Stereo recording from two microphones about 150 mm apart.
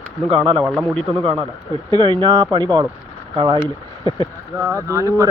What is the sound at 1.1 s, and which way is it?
Speech, 35° right (ahead or behind).